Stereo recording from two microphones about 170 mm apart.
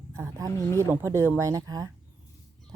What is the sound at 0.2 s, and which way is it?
Speech, 20° right (ahead or behind).